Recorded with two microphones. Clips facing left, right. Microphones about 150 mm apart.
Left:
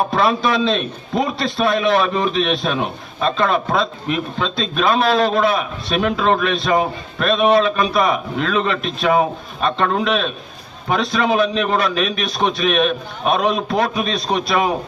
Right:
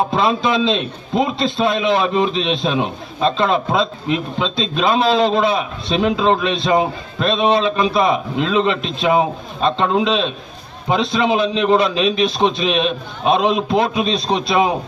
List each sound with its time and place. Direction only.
0.1 s a man's voice: 20° right (ahead or behind)